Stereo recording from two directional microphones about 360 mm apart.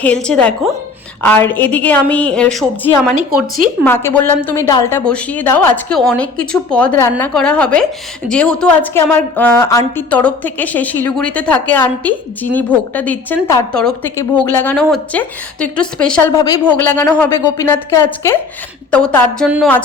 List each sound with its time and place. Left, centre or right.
0.0 s a woman's voice: centre